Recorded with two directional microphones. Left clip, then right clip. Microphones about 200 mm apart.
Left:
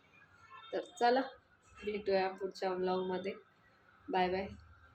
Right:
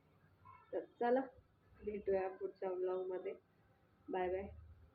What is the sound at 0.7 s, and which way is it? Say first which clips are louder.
Speech: left 5 dB; 15° left (ahead or behind).